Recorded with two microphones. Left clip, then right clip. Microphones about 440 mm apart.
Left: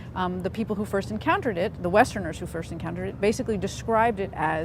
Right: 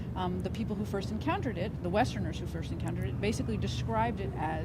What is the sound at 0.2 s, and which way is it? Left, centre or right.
Speech, left.